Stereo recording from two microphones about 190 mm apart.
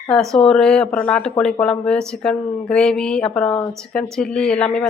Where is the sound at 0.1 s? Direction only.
Centre (ahead or behind).